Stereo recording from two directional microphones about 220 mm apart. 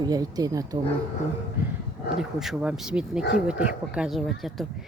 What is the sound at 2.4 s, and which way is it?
Speech, centre (ahead or behind).